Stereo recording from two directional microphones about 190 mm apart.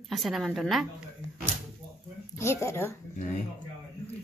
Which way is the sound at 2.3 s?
15° left (ahead or behind).